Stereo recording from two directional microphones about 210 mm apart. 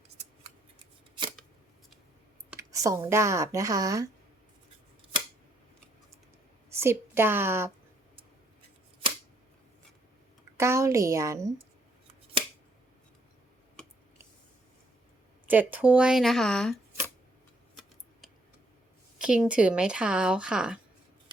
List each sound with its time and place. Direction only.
2.5 s speech: 15° right (ahead or behind)
6.7 s a woman's voice: 10° right (ahead or behind)
10.6 s a woman's voice: 15° right (ahead or behind)
12.4 s scissors: 25° right (ahead or behind)
15.4 s speech: 10° right (ahead or behind)
19.2 s speech: 5° right (ahead or behind)